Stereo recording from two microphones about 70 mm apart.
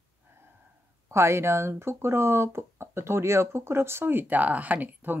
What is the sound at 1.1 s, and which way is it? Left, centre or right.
Speech, right.